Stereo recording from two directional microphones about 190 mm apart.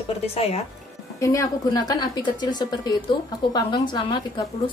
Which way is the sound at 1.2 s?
15° left (ahead or behind).